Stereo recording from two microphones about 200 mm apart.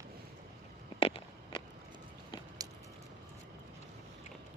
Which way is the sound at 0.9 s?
25° left (ahead or behind).